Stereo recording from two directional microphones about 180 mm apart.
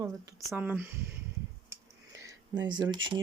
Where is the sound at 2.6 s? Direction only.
25° right (ahead or behind).